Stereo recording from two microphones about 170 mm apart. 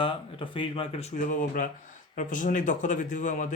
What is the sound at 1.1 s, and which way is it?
Speech, 50° left (ahead or behind).